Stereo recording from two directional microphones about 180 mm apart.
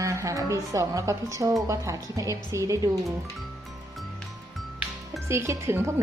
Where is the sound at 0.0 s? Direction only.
15° right (ahead or behind).